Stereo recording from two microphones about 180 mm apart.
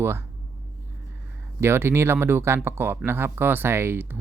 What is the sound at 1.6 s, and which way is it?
Speech, 15° right (ahead or behind).